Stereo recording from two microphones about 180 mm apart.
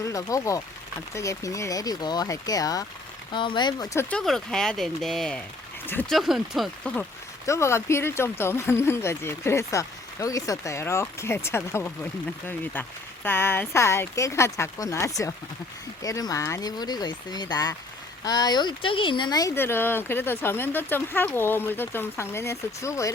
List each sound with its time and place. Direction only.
0.0 s speech: 20° left (ahead or behind)
4.1 s speech: centre (ahead or behind)
7.4 s speech: 15° left (ahead or behind)
13.2 s speech: 10° left (ahead or behind)